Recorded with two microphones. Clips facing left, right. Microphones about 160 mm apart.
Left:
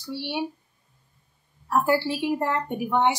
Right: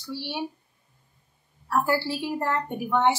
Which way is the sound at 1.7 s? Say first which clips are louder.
Left 2 dB; 15° left (ahead or behind).